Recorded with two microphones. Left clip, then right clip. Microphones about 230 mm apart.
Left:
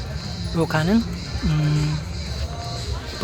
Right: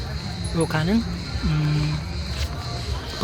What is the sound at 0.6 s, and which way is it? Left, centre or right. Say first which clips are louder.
Speech: left 2 dB; centre.